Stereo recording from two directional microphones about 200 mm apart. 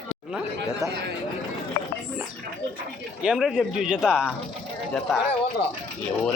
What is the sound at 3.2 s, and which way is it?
Speech, 5° right (ahead or behind).